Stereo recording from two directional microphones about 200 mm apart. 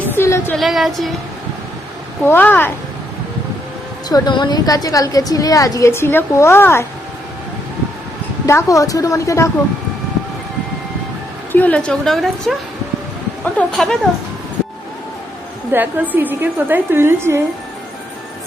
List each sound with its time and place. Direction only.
0.1 s a sound: 10° left (ahead or behind)
0.5 s a woman's voice: centre (ahead or behind)
2.2 s a woman's voice: 10° left (ahead or behind)
4.1 s a woman's voice: 20° left (ahead or behind)
8.4 s a woman's voice: 15° left (ahead or behind)
11.5 s a woman's voice: 5° left (ahead or behind)
15.7 s a woman's voice: 10° right (ahead or behind)